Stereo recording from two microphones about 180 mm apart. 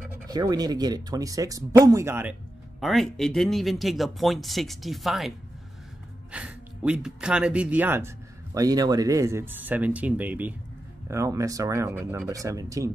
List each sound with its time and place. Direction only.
0.3 s speech: 20° right (ahead or behind)
2.8 s speech: centre (ahead or behind)
6.3 s speech: 5° right (ahead or behind)